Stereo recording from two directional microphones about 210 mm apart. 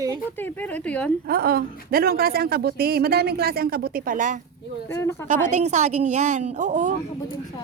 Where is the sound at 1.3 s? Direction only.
45° right (ahead or behind).